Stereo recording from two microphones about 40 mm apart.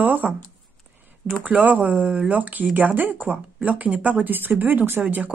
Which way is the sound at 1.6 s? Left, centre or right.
Right.